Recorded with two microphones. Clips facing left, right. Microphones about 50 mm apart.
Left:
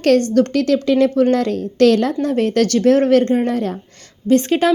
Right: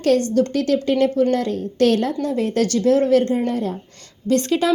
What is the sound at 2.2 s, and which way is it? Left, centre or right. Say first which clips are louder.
A woman's voice: left 4 dB; left.